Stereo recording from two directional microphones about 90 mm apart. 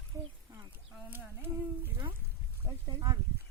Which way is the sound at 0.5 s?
35° right (ahead or behind).